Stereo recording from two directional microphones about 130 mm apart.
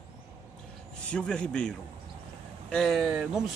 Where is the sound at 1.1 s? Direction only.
5° left (ahead or behind).